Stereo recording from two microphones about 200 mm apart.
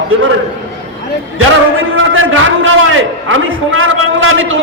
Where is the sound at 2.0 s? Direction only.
80° right.